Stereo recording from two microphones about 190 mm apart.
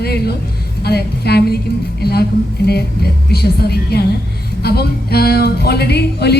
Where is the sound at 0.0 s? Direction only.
55° left (ahead or behind).